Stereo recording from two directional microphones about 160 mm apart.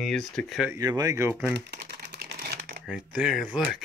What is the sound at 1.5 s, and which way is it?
Typewriter, 80° right.